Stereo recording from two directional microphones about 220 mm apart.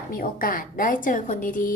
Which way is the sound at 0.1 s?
40° left (ahead or behind).